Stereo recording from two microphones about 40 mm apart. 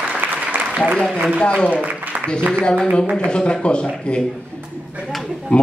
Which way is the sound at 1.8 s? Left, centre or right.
Right.